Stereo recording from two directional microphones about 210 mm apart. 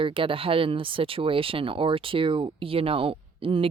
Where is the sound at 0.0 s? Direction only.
25° right (ahead or behind).